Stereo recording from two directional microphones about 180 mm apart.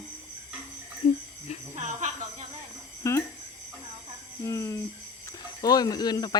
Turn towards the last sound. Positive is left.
turn(degrees=20)  # may be behind; listen again after turning